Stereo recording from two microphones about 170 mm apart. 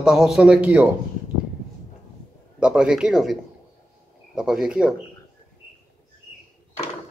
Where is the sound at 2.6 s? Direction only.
5° right (ahead or behind).